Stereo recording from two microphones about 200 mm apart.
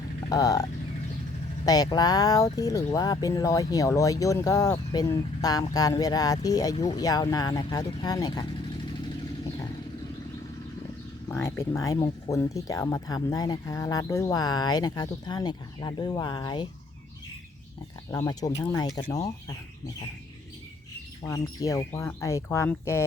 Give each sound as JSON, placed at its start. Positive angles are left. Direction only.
{"t": 0.3, "sound": "speech", "side_deg": 20}
{"t": 1.6, "sound": "speech", "side_deg": 20}
{"t": 11.3, "sound": "speech", "side_deg": 10}
{"t": 18.1, "sound": "speech", "side_deg": 15}
{"t": 21.2, "sound": "speech", "side_deg": 15}